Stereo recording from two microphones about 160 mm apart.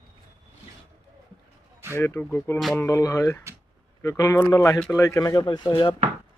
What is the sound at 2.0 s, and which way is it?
Speech, 15° left (ahead or behind).